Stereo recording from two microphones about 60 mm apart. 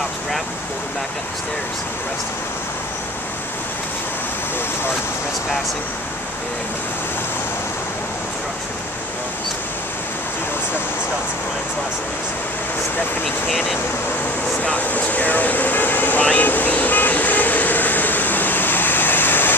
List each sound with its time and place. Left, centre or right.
13.5 s speech: centre
14.6 s air conditioning: left